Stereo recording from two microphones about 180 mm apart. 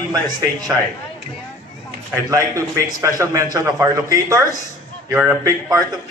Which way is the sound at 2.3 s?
15° right (ahead or behind).